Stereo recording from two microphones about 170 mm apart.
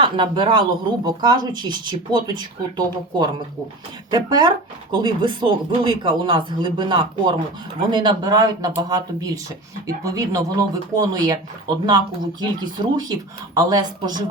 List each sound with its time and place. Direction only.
0.0 s speech: 30° right (ahead or behind)